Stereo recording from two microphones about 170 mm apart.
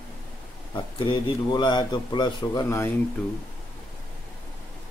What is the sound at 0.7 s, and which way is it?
A man's voice, 30° left (ahead or behind).